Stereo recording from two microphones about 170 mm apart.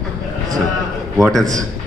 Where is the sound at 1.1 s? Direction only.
Centre (ahead or behind).